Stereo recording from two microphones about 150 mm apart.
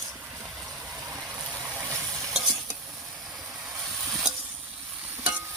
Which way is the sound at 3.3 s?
5° right (ahead or behind).